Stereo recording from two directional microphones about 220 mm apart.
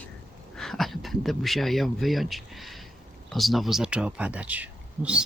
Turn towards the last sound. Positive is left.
turn(degrees=-5)  # may be behind; listen again after turning